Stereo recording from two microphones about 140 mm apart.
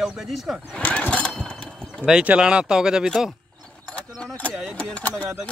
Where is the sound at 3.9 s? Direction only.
5° left (ahead or behind).